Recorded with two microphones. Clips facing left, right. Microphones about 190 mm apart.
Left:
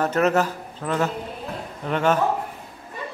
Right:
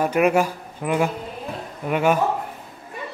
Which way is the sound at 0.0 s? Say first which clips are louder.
Right 2 dB; 10° right (ahead or behind).